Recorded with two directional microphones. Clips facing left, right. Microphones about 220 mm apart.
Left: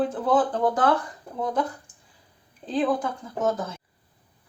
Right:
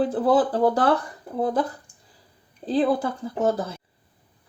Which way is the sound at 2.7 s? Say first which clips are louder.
Right 3 dB; 35° right (ahead or behind).